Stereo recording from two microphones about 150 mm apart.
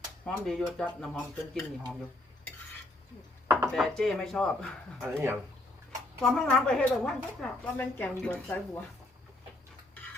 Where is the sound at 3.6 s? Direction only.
Centre (ahead or behind).